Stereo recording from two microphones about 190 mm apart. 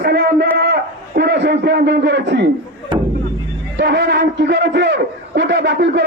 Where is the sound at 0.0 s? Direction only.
60° right (ahead or behind).